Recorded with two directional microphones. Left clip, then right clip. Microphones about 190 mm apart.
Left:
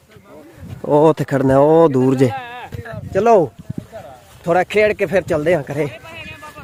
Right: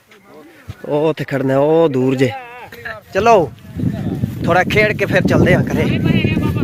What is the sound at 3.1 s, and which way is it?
Speech, 10° left (ahead or behind).